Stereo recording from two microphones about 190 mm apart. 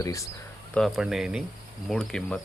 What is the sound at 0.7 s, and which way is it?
Speech, centre (ahead or behind).